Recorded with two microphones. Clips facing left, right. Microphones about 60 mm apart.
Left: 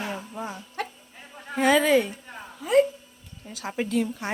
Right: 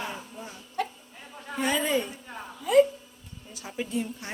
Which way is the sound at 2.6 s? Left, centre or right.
Left.